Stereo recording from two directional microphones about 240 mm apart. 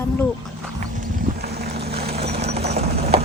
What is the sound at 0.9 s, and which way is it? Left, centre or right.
Boat, right.